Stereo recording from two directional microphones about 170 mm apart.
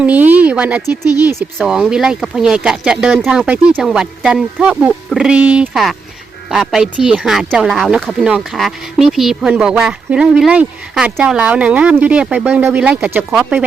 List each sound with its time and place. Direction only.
0.0 s speech: 10° right (ahead or behind)
0.9 s speech: 20° left (ahead or behind)
1.5 s speech: 5° right (ahead or behind)